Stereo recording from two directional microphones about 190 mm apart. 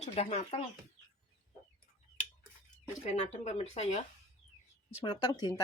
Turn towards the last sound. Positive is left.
turn(degrees=20)  # may be behind; listen again after turning